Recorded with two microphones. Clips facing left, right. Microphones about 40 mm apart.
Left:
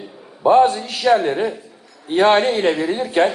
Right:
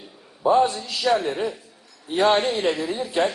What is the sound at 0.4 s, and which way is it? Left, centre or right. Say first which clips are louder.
A man's voice: left 6 dB; left.